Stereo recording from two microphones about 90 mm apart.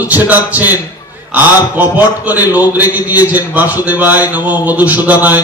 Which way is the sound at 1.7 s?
20° right (ahead or behind).